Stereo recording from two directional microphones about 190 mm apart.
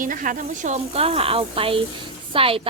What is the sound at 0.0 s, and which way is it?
A woman's voice, 45° right (ahead or behind).